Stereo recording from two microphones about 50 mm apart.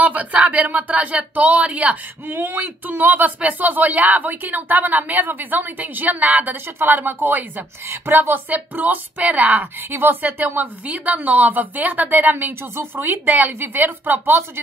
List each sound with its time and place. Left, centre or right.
0.0 s speech: right
2.2 s speech: right